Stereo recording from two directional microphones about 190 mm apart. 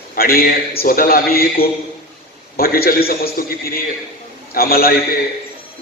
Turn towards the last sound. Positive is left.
turn(degrees=50)  # may be behind; listen again after turning